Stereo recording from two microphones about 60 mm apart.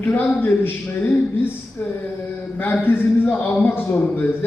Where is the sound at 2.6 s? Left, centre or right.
Left.